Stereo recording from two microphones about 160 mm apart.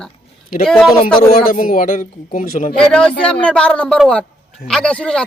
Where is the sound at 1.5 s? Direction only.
60° left (ahead or behind).